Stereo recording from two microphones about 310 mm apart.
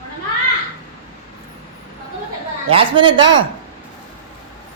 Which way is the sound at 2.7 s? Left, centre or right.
Centre.